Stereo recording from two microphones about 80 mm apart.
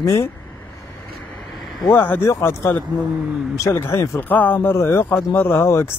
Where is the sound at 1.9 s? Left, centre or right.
Left.